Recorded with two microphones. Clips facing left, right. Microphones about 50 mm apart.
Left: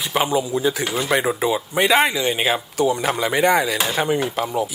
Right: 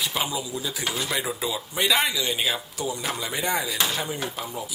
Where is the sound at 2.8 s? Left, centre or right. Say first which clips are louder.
Left 12 dB; left.